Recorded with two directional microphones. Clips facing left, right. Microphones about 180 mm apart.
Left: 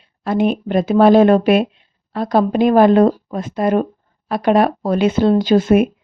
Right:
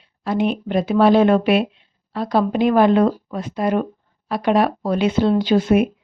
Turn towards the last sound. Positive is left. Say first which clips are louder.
# left 3 dB
turn(degrees=45)  # may be behind; listen again after turning